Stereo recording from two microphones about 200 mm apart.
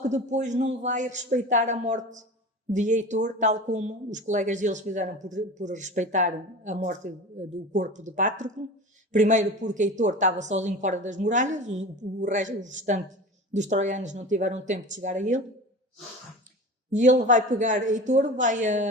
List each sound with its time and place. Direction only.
0.0 s speech: 35° right (ahead or behind)
16.9 s speech: 40° right (ahead or behind)